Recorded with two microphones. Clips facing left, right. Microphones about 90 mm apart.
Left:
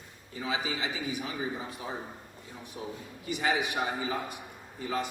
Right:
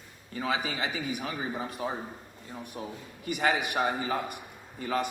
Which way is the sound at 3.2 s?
55° right (ahead or behind).